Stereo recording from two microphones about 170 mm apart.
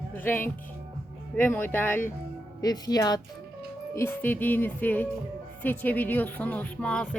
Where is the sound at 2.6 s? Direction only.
20° left (ahead or behind); by 7.1 s 5° left (ahead or behind).